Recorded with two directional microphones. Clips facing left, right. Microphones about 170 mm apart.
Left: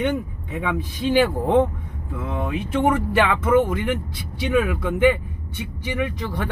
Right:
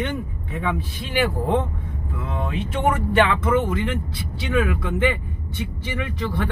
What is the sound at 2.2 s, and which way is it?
Speech, 20° left (ahead or behind).